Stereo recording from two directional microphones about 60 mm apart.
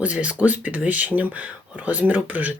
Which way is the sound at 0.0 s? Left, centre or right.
Right.